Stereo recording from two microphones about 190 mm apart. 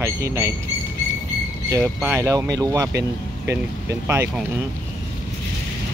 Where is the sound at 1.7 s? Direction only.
15° right (ahead or behind).